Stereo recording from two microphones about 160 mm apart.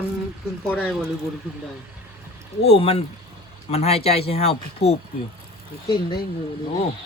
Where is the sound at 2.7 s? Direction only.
40° left (ahead or behind).